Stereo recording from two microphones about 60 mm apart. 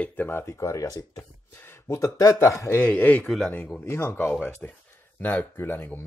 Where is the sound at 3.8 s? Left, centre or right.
Left.